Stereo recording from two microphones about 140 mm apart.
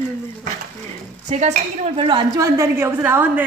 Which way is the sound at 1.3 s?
55° right (ahead or behind).